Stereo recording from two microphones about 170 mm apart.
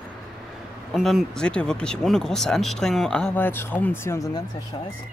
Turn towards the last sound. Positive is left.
turn(degrees=25)  # may be behind; listen again after turning